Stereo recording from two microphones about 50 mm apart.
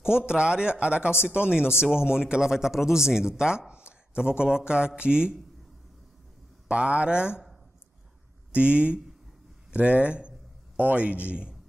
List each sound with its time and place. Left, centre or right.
0.0 s speech: centre
6.7 s speech: right
8.5 s speech: right